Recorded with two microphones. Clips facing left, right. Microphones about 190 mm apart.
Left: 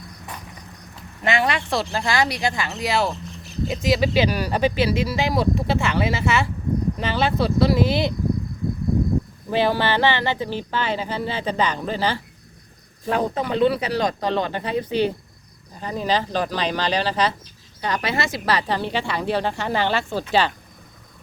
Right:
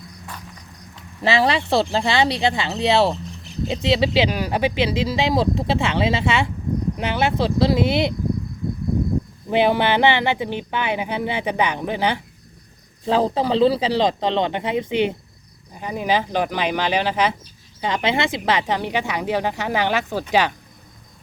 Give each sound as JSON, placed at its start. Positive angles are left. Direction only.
{"t": 1.2, "sound": "speech", "side_deg": -30}
{"t": 9.5, "sound": "speech", "side_deg": -20}
{"t": 13.1, "sound": "speech", "side_deg": -30}